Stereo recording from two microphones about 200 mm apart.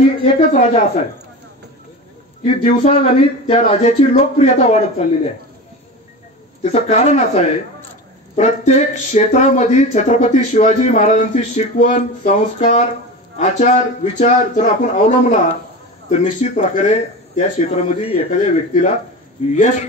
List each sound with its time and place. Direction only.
0.2 s speech: 35° left (ahead or behind)
2.4 s speech: 30° left (ahead or behind)
6.6 s speech: 35° left (ahead or behind)